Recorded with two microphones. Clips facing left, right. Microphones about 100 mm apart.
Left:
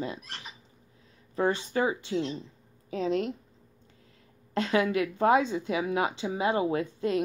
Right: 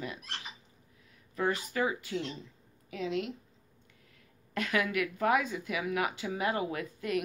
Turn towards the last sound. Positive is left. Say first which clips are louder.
# left 6 dB
turn(degrees=25)  # may be behind; listen again after turning